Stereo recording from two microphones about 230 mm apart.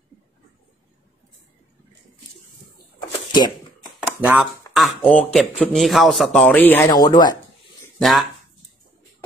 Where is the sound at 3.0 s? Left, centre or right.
Centre.